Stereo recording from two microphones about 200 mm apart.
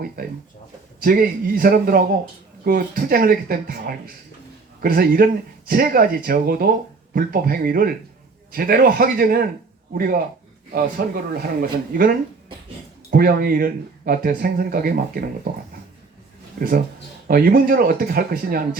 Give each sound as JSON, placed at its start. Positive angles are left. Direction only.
{"t": 1.0, "sound": "speech", "side_deg": -45}
{"t": 16.6, "sound": "speech", "side_deg": -45}